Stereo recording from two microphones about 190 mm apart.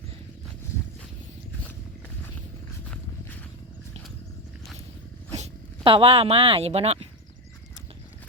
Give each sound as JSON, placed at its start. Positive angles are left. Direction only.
{"t": 5.4, "sound": "speech", "side_deg": -30}